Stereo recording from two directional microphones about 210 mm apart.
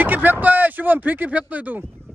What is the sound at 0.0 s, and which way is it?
Speech, 10° right (ahead or behind).